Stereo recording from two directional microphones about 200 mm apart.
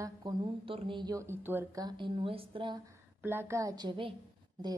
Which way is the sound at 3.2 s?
10° right (ahead or behind).